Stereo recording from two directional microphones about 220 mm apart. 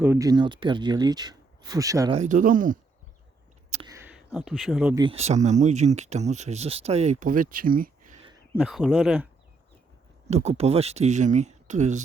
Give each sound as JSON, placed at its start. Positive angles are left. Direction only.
{"t": 0.0, "sound": "speech", "side_deg": -10}
{"t": 2.1, "sound": "speech", "side_deg": -35}
{"t": 3.7, "sound": "a sound", "side_deg": -25}
{"t": 3.9, "sound": "speech", "side_deg": -10}
{"t": 4.9, "sound": "speech", "side_deg": -25}
{"t": 8.5, "sound": "speech", "side_deg": 0}
{"t": 10.2, "sound": "speech", "side_deg": -30}